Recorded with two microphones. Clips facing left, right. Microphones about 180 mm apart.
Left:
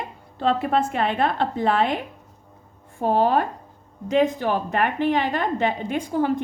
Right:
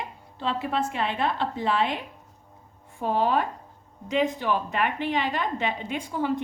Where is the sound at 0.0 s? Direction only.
50° left (ahead or behind).